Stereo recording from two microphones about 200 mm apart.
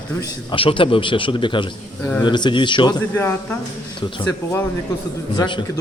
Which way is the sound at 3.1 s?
10° left (ahead or behind).